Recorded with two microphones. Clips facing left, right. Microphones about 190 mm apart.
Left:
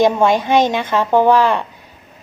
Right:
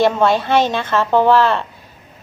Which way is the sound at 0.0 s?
15° left (ahead or behind).